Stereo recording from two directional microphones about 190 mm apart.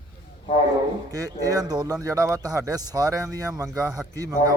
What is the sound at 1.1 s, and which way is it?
Speech, 20° right (ahead or behind).